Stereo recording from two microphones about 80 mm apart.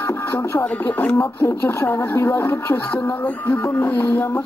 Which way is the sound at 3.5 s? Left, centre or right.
Left.